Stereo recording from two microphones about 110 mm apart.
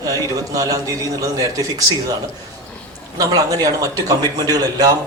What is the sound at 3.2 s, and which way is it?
Speech, 35° right (ahead or behind).